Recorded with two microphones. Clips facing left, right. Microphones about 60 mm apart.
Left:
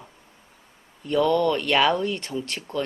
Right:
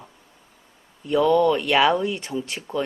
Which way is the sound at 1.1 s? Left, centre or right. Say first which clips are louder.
Right 3 dB; centre.